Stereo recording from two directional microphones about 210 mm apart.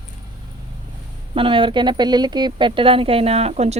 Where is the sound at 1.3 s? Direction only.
25° right (ahead or behind).